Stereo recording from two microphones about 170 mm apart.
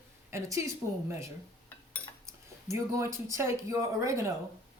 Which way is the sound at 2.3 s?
20° right (ahead or behind).